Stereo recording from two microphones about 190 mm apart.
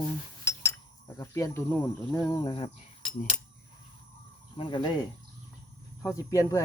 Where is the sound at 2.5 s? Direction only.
30° left (ahead or behind).